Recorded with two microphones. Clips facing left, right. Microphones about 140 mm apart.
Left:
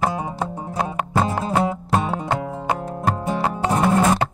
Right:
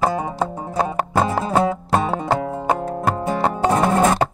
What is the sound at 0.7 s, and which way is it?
Music, 35° right (ahead or behind).